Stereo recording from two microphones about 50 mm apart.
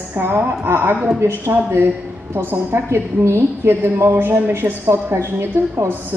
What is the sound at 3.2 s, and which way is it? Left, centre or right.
A woman's voice, right.